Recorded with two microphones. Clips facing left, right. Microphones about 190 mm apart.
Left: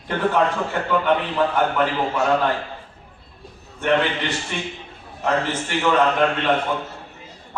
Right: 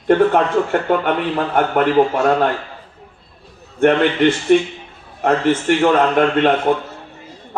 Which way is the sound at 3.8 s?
55° right (ahead or behind).